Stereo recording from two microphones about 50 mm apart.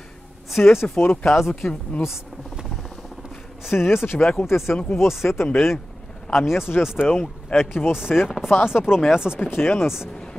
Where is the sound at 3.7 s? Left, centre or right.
Left.